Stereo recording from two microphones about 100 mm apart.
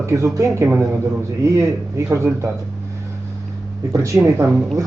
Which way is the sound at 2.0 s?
30° right (ahead or behind).